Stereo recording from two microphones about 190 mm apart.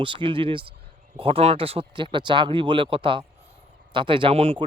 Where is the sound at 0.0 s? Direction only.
25° right (ahead or behind).